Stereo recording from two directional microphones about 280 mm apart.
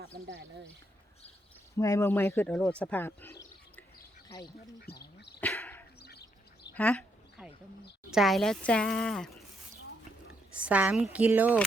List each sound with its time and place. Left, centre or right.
1.7 s speech: centre
4.8 s duck: left
5.4 s a sound: centre
6.0 s duck: left
6.7 s a sound: centre
8.1 s a woman's voice: centre
10.5 s a woman's voice: centre